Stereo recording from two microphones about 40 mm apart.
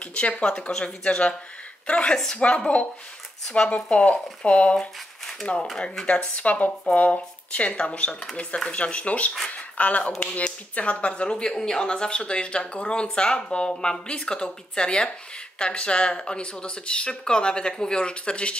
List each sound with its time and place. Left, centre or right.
0.0 s speech: left
4.7 s a sound: centre
6.0 s speech: left